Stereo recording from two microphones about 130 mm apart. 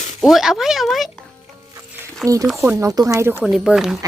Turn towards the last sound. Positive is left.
turn(degrees=-5)  # may be behind; listen again after turning